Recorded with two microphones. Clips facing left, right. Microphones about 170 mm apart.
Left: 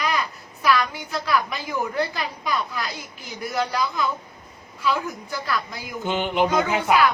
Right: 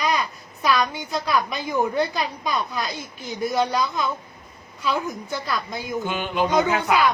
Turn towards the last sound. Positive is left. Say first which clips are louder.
# even
turn(degrees=-20)  # may be behind; listen again after turning